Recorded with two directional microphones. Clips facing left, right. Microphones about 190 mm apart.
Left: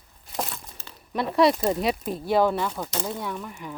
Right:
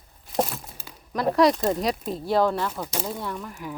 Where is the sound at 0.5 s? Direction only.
10° right (ahead or behind).